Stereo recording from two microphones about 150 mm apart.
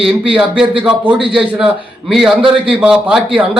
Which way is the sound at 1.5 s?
5° right (ahead or behind).